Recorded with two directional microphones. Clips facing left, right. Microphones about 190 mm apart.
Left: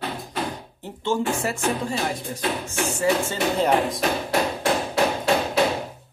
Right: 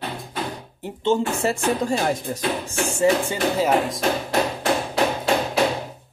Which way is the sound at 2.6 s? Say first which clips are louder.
Right 4 dB; 30° right (ahead or behind).